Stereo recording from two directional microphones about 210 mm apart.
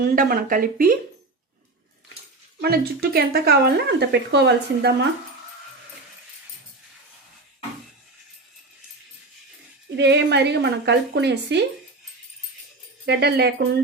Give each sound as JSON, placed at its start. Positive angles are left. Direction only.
{"t": 0.0, "sound": "a woman's voice", "side_deg": -45}
{"t": 2.6, "sound": "a woman's voice", "side_deg": -50}
{"t": 10.0, "sound": "a woman's voice", "side_deg": -55}
{"t": 13.1, "sound": "a woman's voice", "side_deg": -50}